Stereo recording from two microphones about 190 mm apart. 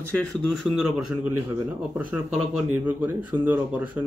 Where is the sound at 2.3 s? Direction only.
5° right (ahead or behind).